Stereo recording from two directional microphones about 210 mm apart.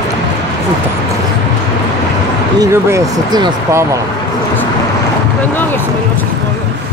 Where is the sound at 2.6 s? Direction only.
15° right (ahead or behind).